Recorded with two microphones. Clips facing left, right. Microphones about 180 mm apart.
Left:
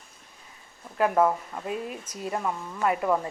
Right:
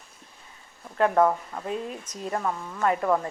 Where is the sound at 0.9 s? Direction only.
5° left (ahead or behind).